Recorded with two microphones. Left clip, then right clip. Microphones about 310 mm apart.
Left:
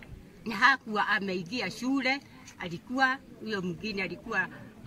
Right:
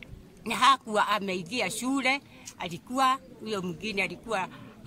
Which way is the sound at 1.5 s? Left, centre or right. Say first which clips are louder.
Right 3 dB; right.